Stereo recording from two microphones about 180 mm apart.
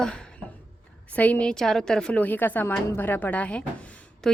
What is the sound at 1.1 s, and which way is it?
A woman's voice, 10° left (ahead or behind).